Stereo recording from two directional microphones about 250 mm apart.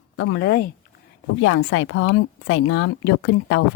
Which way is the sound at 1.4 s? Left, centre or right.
Left.